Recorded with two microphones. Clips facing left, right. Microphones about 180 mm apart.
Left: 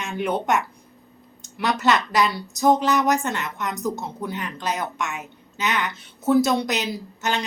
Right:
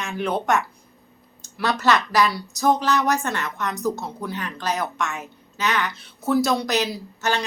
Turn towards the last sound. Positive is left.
turn(degrees=20)  # may be behind; listen again after turning